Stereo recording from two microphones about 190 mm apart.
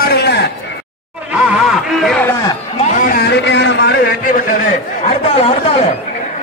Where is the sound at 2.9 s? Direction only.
45° left (ahead or behind); by 4.0 s 65° left (ahead or behind).